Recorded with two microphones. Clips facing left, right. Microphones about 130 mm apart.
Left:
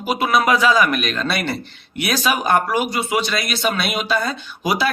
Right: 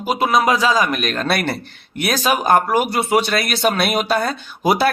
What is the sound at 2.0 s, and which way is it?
Speech, 45° right (ahead or behind).